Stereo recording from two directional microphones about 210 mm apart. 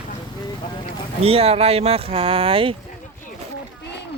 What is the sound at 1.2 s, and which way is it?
Speech, 30° right (ahead or behind).